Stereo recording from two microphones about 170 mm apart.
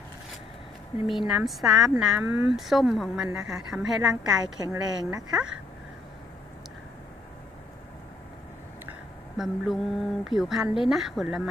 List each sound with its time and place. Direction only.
1.0 s speech: centre (ahead or behind)
4.4 s a woman's voice: 20° right (ahead or behind)
9.4 s speech: centre (ahead or behind)